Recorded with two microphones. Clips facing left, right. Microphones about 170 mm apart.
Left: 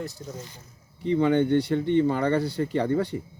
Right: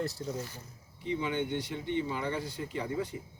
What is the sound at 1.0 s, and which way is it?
Speech, 90° left.